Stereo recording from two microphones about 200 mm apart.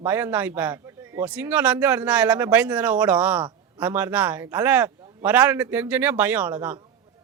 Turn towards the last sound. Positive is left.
turn(degrees=-10)  # may be behind; listen again after turning